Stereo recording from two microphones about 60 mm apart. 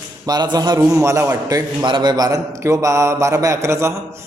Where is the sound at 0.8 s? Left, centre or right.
Right.